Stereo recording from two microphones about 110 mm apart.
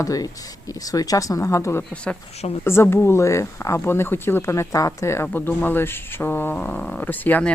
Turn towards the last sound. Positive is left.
turn(degrees=15)  # may be behind; listen again after turning